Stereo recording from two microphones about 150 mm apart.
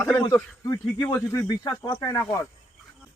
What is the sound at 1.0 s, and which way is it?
Speech, 15° left (ahead or behind).